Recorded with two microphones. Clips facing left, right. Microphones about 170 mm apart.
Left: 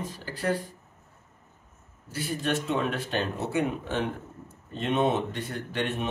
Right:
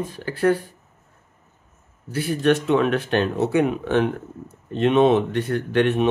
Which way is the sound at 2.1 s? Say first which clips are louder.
Right 9 dB; 65° right (ahead or behind).